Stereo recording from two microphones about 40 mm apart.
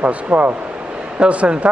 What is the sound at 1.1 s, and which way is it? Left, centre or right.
Speech, right.